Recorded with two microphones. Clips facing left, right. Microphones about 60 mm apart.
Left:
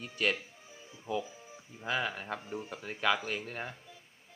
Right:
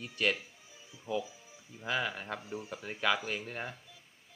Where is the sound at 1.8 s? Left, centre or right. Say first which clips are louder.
Left 1 dB; centre.